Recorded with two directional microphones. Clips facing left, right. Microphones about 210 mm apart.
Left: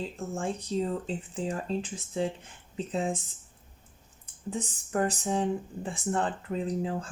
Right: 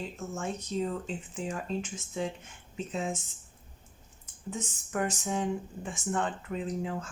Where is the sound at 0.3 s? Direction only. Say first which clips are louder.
Left 3 dB; 30° left (ahead or behind).